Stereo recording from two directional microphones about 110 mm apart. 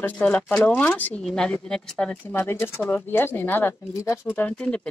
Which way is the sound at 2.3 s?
25° left (ahead or behind).